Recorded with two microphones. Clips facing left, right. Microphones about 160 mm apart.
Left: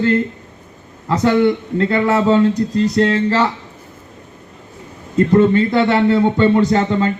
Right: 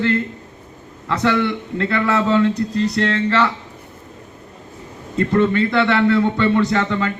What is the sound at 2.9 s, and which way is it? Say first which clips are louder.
Speech: left 3 dB; 35° left (ahead or behind).